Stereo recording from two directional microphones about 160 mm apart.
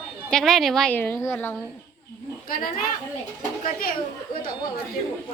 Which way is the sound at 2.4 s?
65° left (ahead or behind).